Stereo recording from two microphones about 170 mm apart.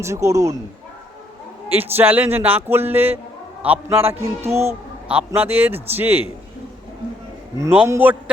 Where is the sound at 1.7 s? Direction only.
10° right (ahead or behind).